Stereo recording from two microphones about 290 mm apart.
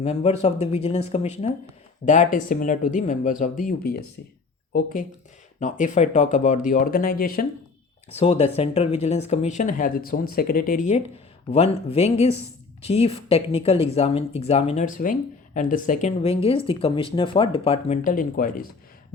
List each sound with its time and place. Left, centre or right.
0.0 s speech: left